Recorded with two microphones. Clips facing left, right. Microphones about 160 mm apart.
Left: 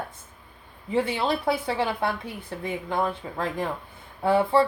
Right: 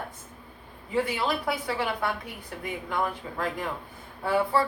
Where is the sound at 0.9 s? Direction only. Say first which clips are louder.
Left 2 dB; 25° left (ahead or behind).